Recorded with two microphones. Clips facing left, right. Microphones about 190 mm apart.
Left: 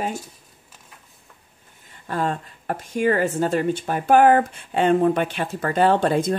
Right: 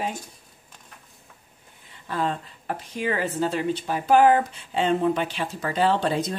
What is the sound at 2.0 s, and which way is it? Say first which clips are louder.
Speech: left 2 dB; 50° left (ahead or behind).